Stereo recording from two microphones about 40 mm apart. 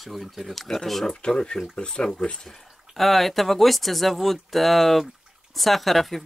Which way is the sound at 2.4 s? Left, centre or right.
Centre.